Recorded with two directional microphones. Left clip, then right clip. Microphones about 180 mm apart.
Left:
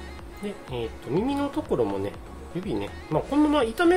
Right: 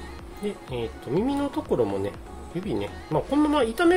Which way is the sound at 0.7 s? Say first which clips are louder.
Even; 10° right (ahead or behind).